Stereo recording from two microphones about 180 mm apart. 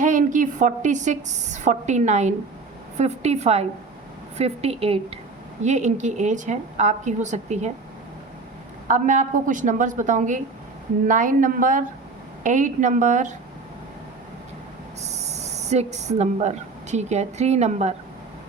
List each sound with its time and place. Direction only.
0.0 s a woman's voice: 45° right (ahead or behind)
8.9 s a woman's voice: 45° right (ahead or behind)
15.0 s a woman's voice: 35° right (ahead or behind)